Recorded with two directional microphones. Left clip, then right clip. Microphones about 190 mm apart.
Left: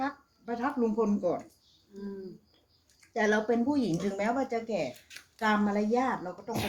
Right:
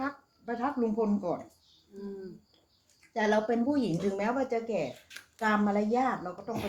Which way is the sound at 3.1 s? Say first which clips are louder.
Even; 10° right (ahead or behind).